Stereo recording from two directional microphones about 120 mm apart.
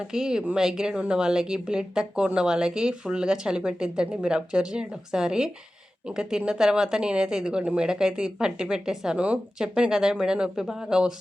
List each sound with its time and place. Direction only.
0.1 s speech: 5° right (ahead or behind)